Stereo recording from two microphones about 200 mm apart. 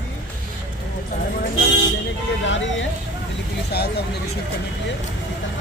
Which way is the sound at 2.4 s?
65° left (ahead or behind).